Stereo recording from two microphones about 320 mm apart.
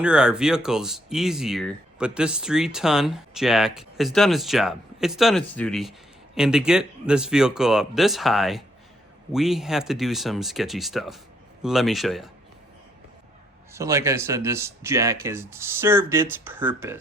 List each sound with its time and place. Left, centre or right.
0.0 s speech: centre
13.7 s speech: centre